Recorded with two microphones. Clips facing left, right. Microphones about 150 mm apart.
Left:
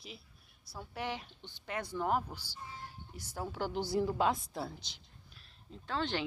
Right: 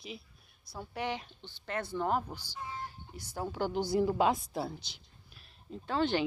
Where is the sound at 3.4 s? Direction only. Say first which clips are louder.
Right 3 dB; centre (ahead or behind).